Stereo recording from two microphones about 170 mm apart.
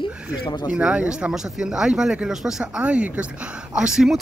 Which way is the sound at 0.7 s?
5° right (ahead or behind).